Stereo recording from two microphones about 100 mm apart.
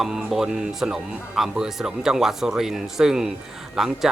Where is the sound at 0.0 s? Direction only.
5° right (ahead or behind).